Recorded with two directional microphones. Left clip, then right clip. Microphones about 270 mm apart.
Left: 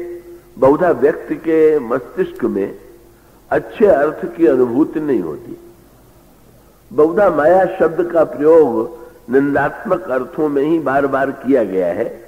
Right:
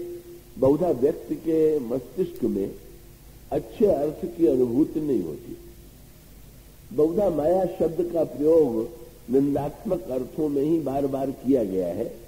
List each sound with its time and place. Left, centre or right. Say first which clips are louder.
0.6 s a man's voice: left 9 dB; left
3.8 s a man's voice: left 10 dB; left
7.0 s a man's voice: left 10 dB; left
7.8 s a man's voice: left 10 dB; left